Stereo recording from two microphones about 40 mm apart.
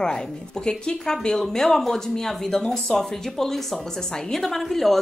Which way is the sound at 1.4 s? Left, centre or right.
Centre.